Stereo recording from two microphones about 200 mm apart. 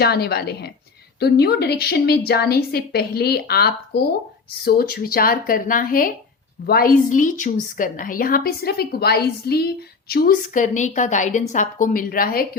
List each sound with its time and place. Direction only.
0.0 s a woman's voice: 55° left (ahead or behind)